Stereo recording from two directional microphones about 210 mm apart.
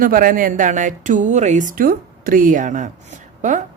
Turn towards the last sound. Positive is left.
turn(degrees=-35)  # may be behind; listen again after turning